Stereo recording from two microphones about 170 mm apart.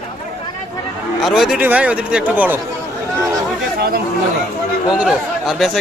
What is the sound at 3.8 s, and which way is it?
Speech, 65° right (ahead or behind).